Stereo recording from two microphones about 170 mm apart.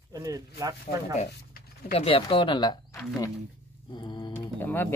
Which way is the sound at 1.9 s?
35° left (ahead or behind).